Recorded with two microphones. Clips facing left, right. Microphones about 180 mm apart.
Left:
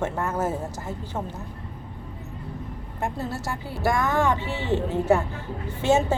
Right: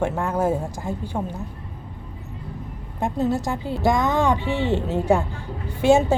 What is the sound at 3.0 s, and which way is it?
A woman's voice, 15° right (ahead or behind).